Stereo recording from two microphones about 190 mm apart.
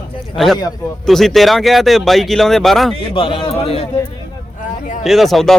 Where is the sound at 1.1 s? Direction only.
Centre (ahead or behind).